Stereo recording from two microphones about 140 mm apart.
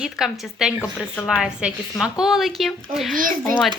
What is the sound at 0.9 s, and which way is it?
Speech, 10° left (ahead or behind).